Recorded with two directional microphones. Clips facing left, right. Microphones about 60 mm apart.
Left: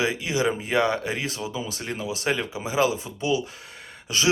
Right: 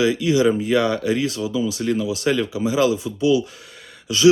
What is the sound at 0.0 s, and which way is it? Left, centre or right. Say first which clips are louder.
Speech: right 7 dB; left.